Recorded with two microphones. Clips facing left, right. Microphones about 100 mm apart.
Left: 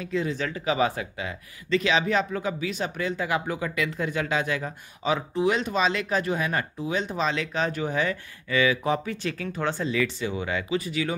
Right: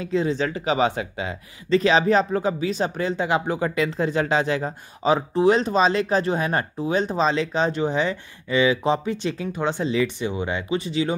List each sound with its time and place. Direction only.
0.0 s speech: 30° right (ahead or behind)
1.8 s speech: 35° right (ahead or behind)